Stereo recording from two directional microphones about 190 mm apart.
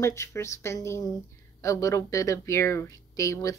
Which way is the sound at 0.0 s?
15° left (ahead or behind).